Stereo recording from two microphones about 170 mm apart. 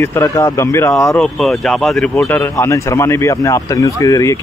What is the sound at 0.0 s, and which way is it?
Speech, 15° left (ahead or behind).